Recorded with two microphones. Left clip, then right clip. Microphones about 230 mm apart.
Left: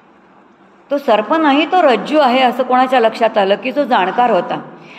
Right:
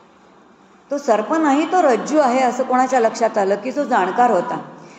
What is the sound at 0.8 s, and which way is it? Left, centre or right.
A woman's voice, left.